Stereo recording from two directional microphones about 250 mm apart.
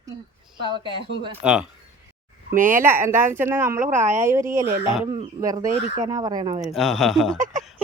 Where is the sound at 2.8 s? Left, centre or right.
Centre.